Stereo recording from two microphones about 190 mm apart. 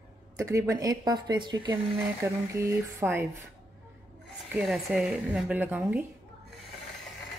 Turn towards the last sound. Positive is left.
turn(degrees=-10)  # may be behind; listen again after turning